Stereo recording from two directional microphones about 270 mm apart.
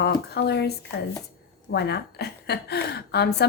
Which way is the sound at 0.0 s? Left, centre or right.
Left.